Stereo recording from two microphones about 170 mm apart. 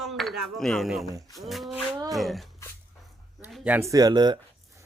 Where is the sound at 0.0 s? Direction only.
Centre (ahead or behind).